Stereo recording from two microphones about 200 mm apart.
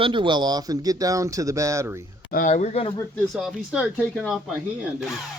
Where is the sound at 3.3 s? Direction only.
Centre (ahead or behind).